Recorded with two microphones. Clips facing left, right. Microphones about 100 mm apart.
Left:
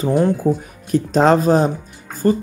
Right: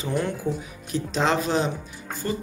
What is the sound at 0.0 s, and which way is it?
Speech, 40° left (ahead or behind).